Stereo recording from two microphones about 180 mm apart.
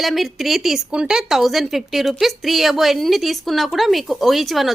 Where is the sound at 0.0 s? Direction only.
Centre (ahead or behind).